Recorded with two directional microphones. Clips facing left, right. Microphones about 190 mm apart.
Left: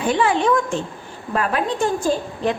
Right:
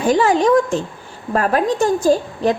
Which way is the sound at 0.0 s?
40° right (ahead or behind).